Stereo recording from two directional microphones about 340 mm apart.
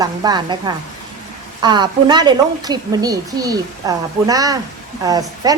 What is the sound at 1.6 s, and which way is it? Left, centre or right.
A woman's voice, centre.